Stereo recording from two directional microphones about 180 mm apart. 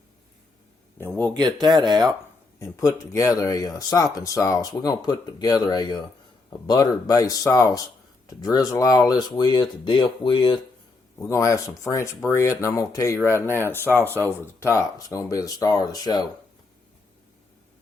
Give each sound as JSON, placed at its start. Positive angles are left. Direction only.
{"t": 0.9, "sound": "speech", "side_deg": 10}
{"t": 1.3, "sound": "speech", "side_deg": -20}
{"t": 2.6, "sound": "speech", "side_deg": 15}